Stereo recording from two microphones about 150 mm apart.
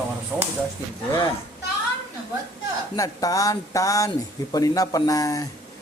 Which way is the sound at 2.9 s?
25° left (ahead or behind).